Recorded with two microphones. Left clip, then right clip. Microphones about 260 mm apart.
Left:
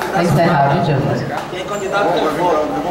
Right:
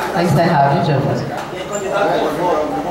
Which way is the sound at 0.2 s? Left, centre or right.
Centre.